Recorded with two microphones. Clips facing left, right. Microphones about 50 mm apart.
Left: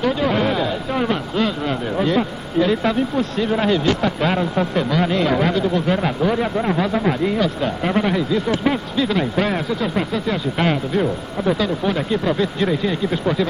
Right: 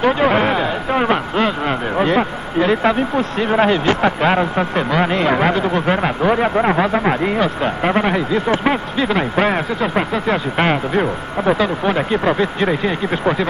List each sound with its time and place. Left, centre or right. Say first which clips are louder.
0.0 s speech: right 4 dB; right